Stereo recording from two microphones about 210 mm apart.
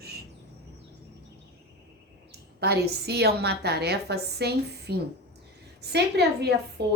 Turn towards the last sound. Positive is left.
turn(degrees=-50)  # may be behind; listen again after turning